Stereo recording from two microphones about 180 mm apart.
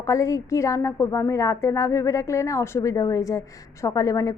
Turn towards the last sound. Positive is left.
turn(degrees=20)  # may be behind; listen again after turning